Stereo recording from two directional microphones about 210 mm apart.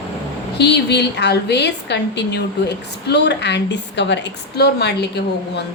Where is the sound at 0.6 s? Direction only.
55° left (ahead or behind).